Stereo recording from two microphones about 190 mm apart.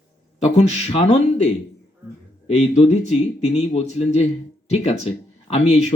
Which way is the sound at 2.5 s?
35° left (ahead or behind).